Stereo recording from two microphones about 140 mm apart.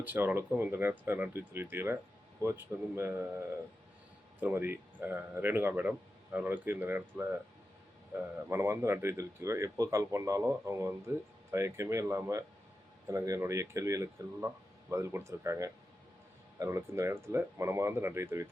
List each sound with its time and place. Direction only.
0.0 s speech: 15° right (ahead or behind)
4.4 s speech: 10° right (ahead or behind)
8.1 s speech: 20° right (ahead or behind)